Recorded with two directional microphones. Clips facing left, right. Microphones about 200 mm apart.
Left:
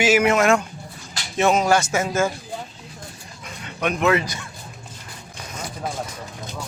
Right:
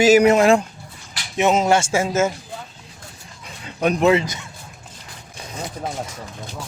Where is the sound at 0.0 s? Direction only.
40° right (ahead or behind).